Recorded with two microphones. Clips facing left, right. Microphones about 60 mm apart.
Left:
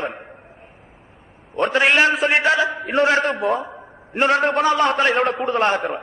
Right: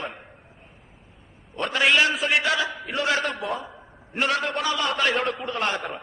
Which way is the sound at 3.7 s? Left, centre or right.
Left.